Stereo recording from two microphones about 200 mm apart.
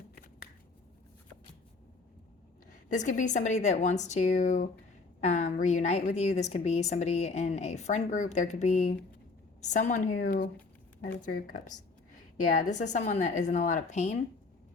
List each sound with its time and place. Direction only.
2.9 s a woman's voice: 40° left (ahead or behind)